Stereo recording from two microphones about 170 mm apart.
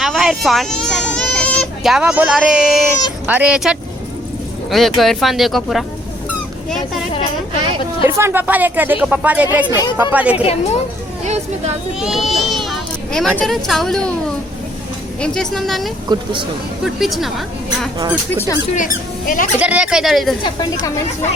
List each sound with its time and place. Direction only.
0.0 s a sound: centre (ahead or behind)
3.3 s speech: 5° right (ahead or behind)
8.0 s speech: 15° right (ahead or behind)
9.6 s a woman's voice: 25° left (ahead or behind)
10.0 s speech: 10° right (ahead or behind)
10.4 s a woman's voice: 35° left (ahead or behind)
11.9 s speech: centre (ahead or behind)
15.2 s speech: 5° left (ahead or behind)
16.0 s speech: 30° right (ahead or behind)
16.8 s speech: centre (ahead or behind)
18.8 s speech: 55° left (ahead or behind)
19.5 s speech: 10° right (ahead or behind)
20.4 s a woman's voice: 25° left (ahead or behind)